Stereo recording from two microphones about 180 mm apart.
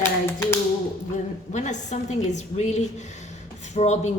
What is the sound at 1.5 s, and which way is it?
A woman's voice, 40° left (ahead or behind).